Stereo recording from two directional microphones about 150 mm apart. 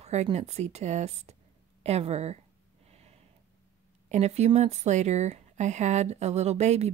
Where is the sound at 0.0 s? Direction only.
45° right (ahead or behind).